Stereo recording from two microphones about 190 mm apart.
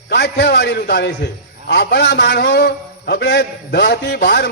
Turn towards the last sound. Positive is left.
turn(degrees=60)  # may be behind; listen again after turning